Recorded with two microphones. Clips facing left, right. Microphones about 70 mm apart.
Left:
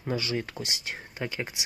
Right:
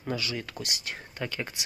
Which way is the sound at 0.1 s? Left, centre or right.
Left.